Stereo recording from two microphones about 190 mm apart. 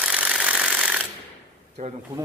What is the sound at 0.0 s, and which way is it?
Sewing machine, 5° right (ahead or behind).